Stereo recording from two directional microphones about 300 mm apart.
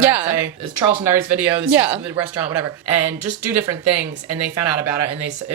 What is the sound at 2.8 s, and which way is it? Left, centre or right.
Speech, left.